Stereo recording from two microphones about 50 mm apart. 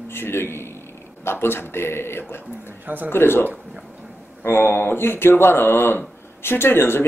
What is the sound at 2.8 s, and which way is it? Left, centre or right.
Speech, right.